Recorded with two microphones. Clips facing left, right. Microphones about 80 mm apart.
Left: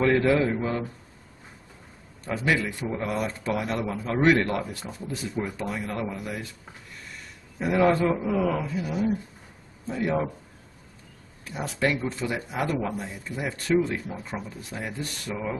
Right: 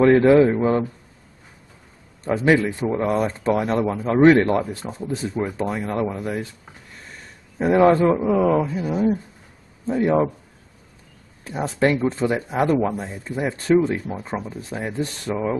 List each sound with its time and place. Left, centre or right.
0.0 s speech: right
2.2 s speech: right
7.5 s speech: right
11.4 s speech: right